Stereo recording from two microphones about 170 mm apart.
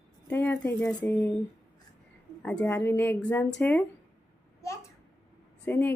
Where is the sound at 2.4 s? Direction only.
10° left (ahead or behind).